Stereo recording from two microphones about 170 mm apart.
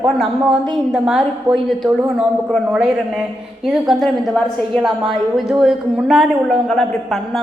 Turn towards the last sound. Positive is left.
turn(degrees=0)  # may be behind; listen again after turning